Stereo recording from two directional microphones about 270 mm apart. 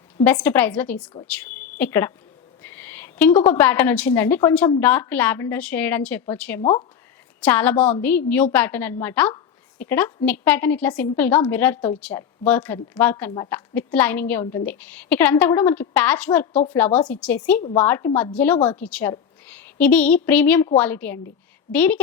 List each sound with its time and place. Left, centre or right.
0.3 s a woman's voice: centre
6.6 s a woman's voice: centre
7.4 s a woman's voice: centre